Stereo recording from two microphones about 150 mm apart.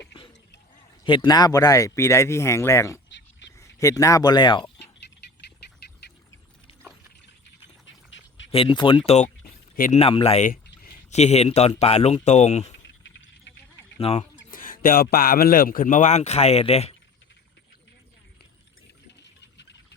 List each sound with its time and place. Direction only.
1.0 s speech: 35° left (ahead or behind)
5.4 s a sound: 90° left
8.5 s speech: 35° left (ahead or behind)
9.0 s speech: 45° left (ahead or behind)
10.4 s a sound: 70° left (ahead or behind)
11.1 s speech: 45° left (ahead or behind)
14.0 s speech: 45° left (ahead or behind)
14.5 s speech: 70° left (ahead or behind); by 16.9 s 45° left (ahead or behind)